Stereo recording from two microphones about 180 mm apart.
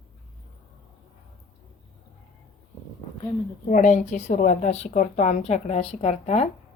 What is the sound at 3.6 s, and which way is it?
Speech, 45° left (ahead or behind).